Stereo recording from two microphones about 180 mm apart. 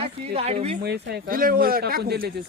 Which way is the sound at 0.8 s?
65° right (ahead or behind).